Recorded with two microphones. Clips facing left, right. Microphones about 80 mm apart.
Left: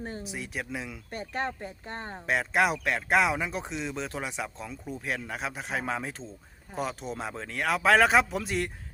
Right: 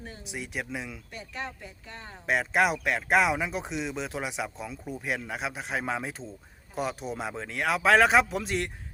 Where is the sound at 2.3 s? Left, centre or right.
Centre.